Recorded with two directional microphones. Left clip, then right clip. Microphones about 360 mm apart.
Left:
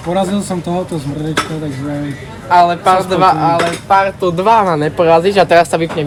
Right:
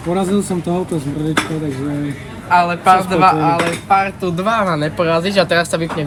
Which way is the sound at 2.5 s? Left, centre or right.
Left.